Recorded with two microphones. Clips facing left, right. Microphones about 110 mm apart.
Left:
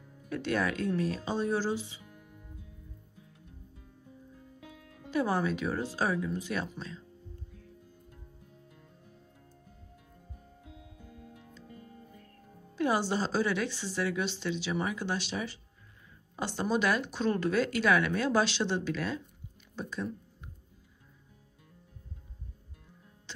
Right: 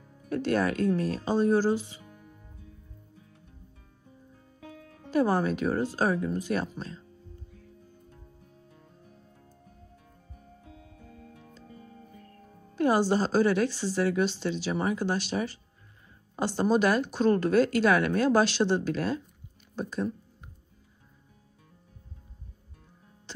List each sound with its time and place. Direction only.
0.3 s speech: 45° right (ahead or behind)
5.1 s speech: 45° right (ahead or behind)
12.7 s speech: 45° right (ahead or behind)